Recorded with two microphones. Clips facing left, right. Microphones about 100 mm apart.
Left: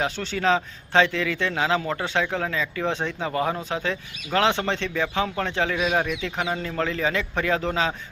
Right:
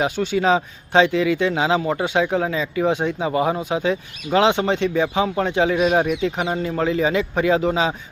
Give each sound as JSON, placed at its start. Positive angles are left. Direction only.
{"t": 0.0, "sound": "speech", "side_deg": -15}